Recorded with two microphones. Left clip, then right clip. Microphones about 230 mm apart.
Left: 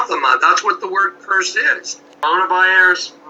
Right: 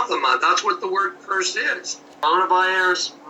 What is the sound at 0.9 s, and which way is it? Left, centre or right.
Speech, left.